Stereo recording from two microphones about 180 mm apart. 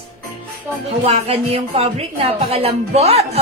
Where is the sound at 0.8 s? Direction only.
35° right (ahead or behind).